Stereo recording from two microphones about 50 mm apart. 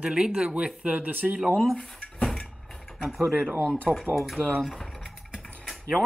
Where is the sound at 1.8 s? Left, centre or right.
Centre.